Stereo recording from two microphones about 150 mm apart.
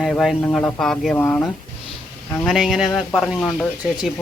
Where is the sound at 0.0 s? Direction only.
Centre (ahead or behind).